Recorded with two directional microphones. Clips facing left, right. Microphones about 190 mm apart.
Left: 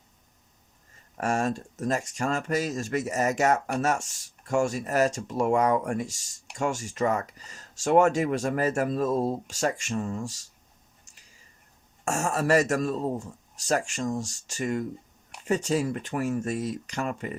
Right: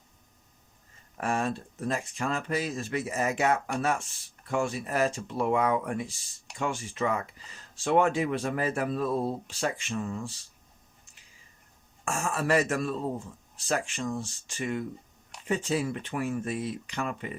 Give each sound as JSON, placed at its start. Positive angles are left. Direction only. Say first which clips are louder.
{"t": 1.2, "sound": "speech", "louder": "left 3 dB", "side_deg": 45}
{"t": 11.0, "sound": "a sound", "louder": "left 1 dB", "side_deg": 40}
{"t": 12.0, "sound": "speech", "louder": "left 3 dB", "side_deg": 40}